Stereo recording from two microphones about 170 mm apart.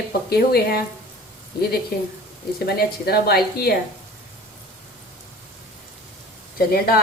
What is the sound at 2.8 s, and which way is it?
A woman's voice, 65° left (ahead or behind).